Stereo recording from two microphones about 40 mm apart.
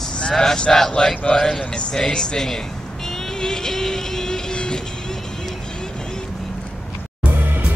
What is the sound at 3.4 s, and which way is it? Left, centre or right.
Vehicle, centre.